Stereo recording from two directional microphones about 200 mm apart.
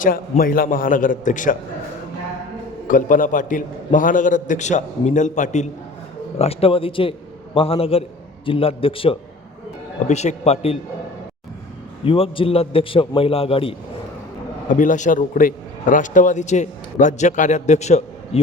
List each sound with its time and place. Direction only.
0.0 s a man's voice: 45° left (ahead or behind)
2.8 s a man's voice: 40° left (ahead or behind)
12.0 s a man's voice: 25° left (ahead or behind)
14.8 s a man's voice: 40° left (ahead or behind)